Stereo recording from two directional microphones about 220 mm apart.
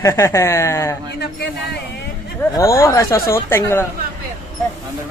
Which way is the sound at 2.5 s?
15° left (ahead or behind).